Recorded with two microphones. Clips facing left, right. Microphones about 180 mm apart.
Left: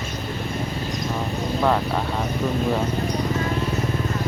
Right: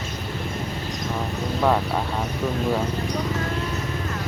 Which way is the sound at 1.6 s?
5° right (ahead or behind).